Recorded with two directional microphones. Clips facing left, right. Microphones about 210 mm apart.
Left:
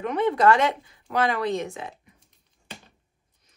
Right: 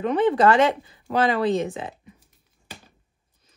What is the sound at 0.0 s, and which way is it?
Speech, 30° right (ahead or behind).